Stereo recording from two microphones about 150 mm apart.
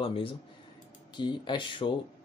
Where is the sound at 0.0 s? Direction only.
35° left (ahead or behind).